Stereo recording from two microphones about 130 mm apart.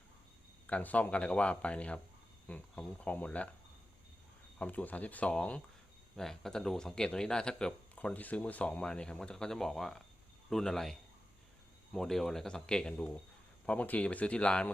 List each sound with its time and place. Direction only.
0.7 s speech: 10° left (ahead or behind)
4.5 s speech: 10° left (ahead or behind)
11.9 s speech: 5° left (ahead or behind)